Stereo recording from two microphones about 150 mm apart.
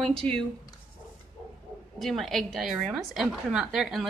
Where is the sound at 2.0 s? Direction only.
Centre (ahead or behind).